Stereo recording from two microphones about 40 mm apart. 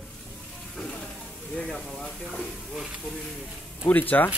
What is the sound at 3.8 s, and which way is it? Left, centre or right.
Speech, left.